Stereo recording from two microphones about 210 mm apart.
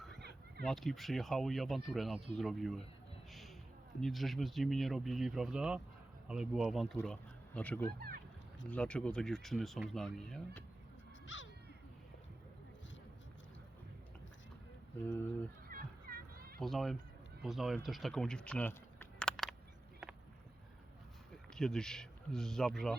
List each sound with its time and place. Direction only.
0.2 s a sound: 50° right (ahead or behind)
0.6 s speech: centre (ahead or behind)
4.0 s speech: centre (ahead or behind)
7.9 s boat: 45° right (ahead or behind)
8.7 s speech: 5° left (ahead or behind)
11.3 s crow: 65° left (ahead or behind)
15.7 s a sound: 45° right (ahead or behind)
16.6 s speech: centre (ahead or behind)
21.5 s speech: centre (ahead or behind)